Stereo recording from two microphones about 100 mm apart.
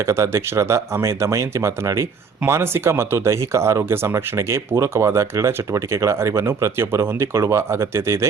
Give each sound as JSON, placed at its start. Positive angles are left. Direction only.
{"t": 0.0, "sound": "speech", "side_deg": -30}